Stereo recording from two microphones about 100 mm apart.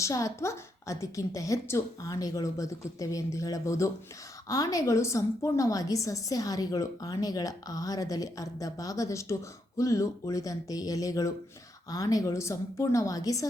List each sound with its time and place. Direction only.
0.0 s a woman's voice: 30° left (ahead or behind)